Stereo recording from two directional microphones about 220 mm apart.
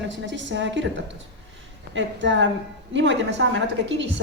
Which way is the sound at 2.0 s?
55° right (ahead or behind).